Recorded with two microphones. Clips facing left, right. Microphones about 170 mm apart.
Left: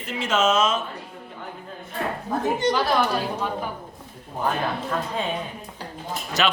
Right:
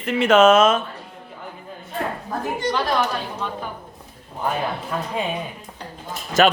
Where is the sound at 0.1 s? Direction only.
60° right (ahead or behind).